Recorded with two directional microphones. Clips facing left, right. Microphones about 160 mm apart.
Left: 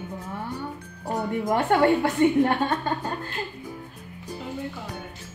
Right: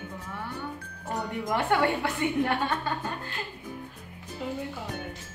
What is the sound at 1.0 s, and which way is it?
A woman's voice, 40° left (ahead or behind).